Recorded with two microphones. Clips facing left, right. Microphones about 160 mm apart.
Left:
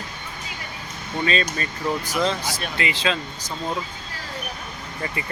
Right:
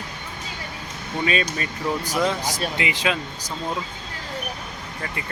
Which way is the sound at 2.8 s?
15° right (ahead or behind).